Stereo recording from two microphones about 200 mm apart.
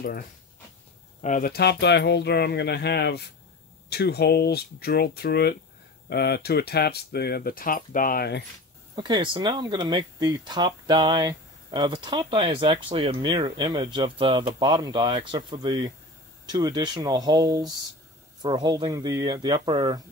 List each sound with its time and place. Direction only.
1.2 s speech: 40° left (ahead or behind)
8.9 s speech: 25° right (ahead or behind)